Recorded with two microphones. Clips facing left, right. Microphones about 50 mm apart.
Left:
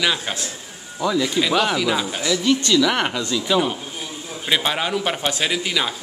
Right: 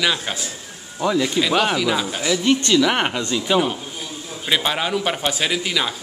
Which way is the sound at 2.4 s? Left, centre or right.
Right.